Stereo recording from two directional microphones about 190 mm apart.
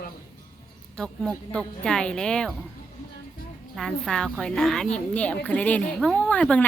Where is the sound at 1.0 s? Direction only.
5° left (ahead or behind).